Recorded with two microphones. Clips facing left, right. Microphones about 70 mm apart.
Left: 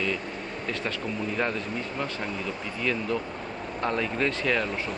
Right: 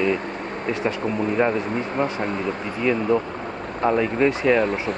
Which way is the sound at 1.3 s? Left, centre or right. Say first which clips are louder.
Right 8 dB; right.